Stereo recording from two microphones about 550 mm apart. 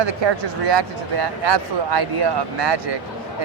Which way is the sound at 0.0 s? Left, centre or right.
Right.